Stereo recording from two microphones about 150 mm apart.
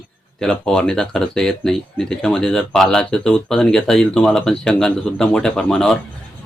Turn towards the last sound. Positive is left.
turn(degrees=5)  # may be behind; listen again after turning